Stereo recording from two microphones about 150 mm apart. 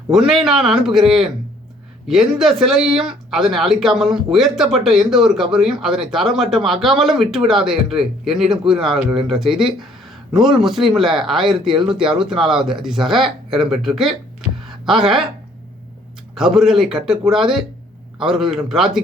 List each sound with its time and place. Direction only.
0.1 s speech: centre (ahead or behind)
14.7 s music: centre (ahead or behind)
16.3 s speech: centre (ahead or behind)